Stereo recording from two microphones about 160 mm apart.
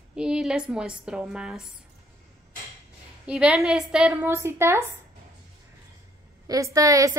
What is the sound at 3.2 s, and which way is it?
A woman's voice, 5° right (ahead or behind).